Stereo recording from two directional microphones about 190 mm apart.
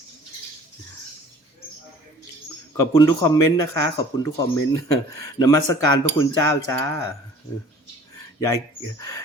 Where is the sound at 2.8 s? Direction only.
20° left (ahead or behind).